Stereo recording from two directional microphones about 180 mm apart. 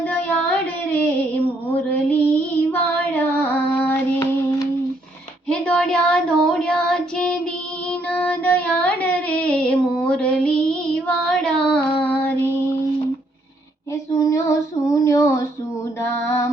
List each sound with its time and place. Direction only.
0.0 s a sound: 10° left (ahead or behind)
0.9 s music: 5° left (ahead or behind)
1.6 s female singing: 10° left (ahead or behind)
5.5 s child singing: 5° left (ahead or behind)
7.9 s music: 10° left (ahead or behind)
13.9 s child singing: 15° left (ahead or behind)
16.1 s female singing: 15° left (ahead or behind)